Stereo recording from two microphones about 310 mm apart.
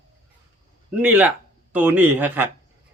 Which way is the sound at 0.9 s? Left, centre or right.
Centre.